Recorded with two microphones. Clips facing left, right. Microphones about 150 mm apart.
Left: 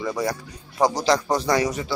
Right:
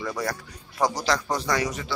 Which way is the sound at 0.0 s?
15° left (ahead or behind).